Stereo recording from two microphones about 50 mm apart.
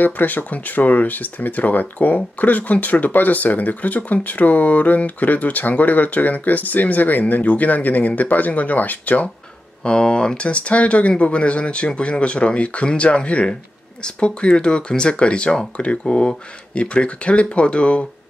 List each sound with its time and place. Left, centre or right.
0.0 s speech: left
9.8 s speech: centre